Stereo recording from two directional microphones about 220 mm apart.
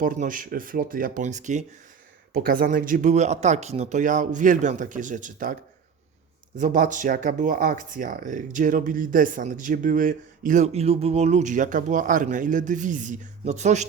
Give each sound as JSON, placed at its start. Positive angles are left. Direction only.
{"t": 0.0, "sound": "speech", "side_deg": -40}
{"t": 6.6, "sound": "speech", "side_deg": -35}